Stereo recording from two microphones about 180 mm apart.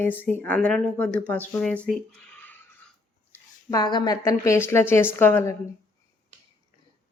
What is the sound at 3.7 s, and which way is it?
A woman's voice, 20° left (ahead or behind).